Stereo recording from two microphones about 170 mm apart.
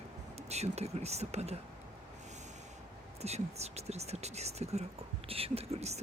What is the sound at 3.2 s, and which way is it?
Speech, 40° right (ahead or behind).